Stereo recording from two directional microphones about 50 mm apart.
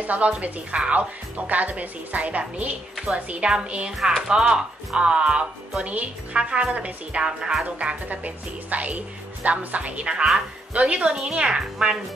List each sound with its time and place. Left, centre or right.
0.0 s a woman's voice: right
11.1 s a woman's voice: centre